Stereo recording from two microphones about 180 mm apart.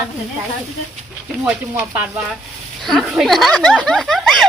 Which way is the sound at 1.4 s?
10° right (ahead or behind).